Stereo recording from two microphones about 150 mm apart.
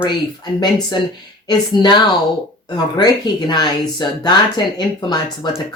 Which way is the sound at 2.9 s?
25° left (ahead or behind).